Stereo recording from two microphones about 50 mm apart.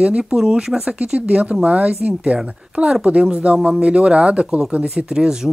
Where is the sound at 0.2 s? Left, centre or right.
Centre.